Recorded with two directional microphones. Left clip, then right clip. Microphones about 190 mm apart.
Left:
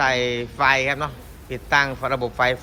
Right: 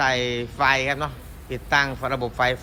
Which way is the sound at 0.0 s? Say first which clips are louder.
Left 2 dB; 15° right (ahead or behind).